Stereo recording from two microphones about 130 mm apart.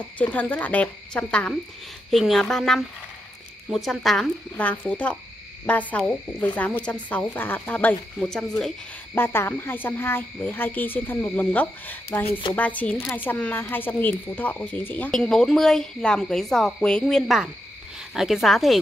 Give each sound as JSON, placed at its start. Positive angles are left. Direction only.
{"t": 0.2, "sound": "a woman's voice", "side_deg": 10}
{"t": 9.1, "sound": "speech", "side_deg": 15}
{"t": 12.3, "sound": "speech", "side_deg": 40}
{"t": 12.5, "sound": "a woman's voice", "side_deg": 10}